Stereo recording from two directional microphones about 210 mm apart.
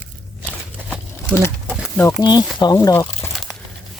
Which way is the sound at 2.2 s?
20° left (ahead or behind).